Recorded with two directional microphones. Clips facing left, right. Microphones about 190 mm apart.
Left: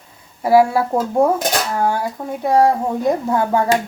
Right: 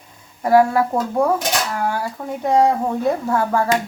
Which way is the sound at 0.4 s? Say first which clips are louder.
Left 1 dB; 10° left (ahead or behind).